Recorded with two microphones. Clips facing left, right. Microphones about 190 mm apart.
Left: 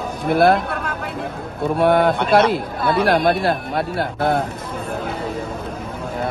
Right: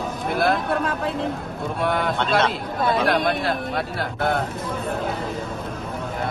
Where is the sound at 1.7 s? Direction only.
55° left (ahead or behind).